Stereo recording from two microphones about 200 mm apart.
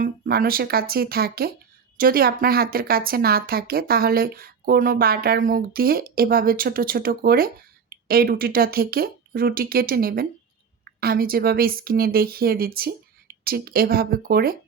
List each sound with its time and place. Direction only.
0.0 s a woman's voice: 45° right (ahead or behind)